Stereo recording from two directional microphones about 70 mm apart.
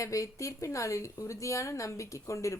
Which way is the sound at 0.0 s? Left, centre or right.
Left.